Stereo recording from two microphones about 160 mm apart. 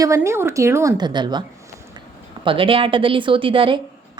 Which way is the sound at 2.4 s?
35° right (ahead or behind).